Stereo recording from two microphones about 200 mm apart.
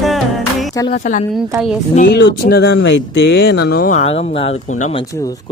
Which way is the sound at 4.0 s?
30° left (ahead or behind).